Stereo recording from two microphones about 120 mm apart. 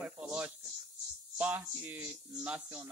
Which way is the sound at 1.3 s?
15° right (ahead or behind).